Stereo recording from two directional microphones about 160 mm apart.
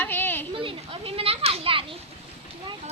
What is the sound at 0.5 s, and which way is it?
Children playing, 35° right (ahead or behind).